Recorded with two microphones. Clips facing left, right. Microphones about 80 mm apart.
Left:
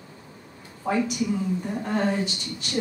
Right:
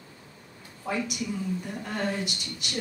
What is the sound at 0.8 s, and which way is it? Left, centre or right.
A man's voice, centre.